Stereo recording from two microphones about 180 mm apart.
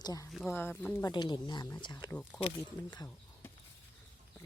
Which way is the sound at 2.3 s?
5° left (ahead or behind).